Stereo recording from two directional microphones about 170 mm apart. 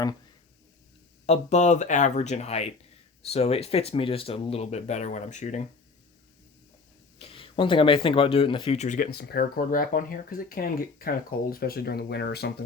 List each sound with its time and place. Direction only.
1.3 s speech: 40° left (ahead or behind)
7.2 s speech: 30° left (ahead or behind); by 12.5 s 70° left (ahead or behind)